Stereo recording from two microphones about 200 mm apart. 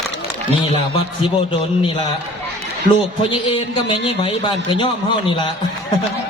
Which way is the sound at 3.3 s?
25° left (ahead or behind).